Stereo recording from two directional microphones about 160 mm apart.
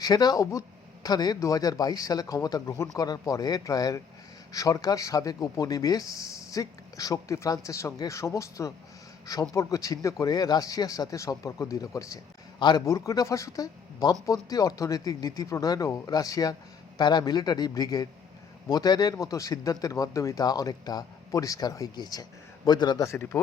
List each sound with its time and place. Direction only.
0.0 s speech: 25° left (ahead or behind)